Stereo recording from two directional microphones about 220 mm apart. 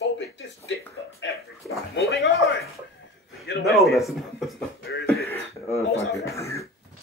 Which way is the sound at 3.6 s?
Centre (ahead or behind).